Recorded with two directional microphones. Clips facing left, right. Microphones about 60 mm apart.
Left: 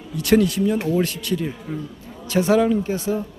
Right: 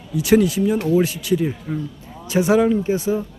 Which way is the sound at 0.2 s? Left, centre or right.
Centre.